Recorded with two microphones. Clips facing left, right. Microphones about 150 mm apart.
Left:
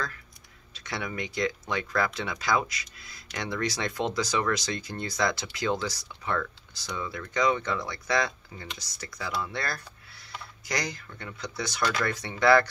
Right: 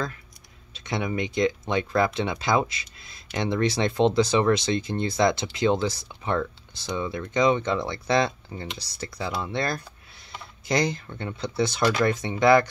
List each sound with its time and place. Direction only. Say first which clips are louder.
0.7 s speech: right 6 dB; 20° right (ahead or behind)